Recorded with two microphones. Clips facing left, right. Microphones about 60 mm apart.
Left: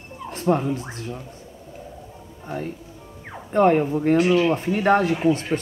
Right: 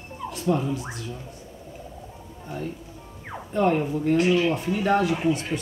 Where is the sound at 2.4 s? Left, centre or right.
Left.